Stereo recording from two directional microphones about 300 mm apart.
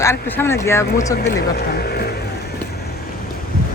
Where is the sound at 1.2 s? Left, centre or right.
Left.